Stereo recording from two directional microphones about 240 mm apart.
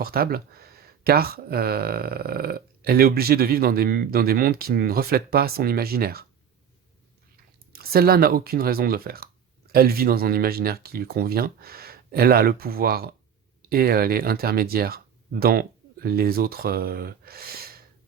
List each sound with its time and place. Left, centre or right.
0.0 s speech: right
7.7 s speech: right